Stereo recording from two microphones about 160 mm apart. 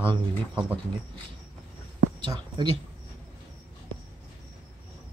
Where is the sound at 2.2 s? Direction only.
30° right (ahead or behind).